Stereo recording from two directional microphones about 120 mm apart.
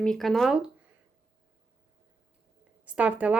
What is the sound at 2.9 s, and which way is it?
Speech, 10° right (ahead or behind).